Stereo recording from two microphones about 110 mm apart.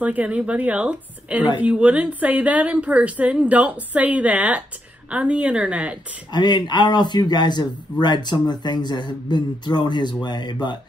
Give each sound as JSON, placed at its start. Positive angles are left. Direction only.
{"t": 0.0, "sound": "a woman's voice", "side_deg": -15}
{"t": 6.3, "sound": "speech", "side_deg": 40}